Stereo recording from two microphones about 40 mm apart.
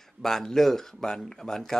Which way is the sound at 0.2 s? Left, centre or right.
Centre.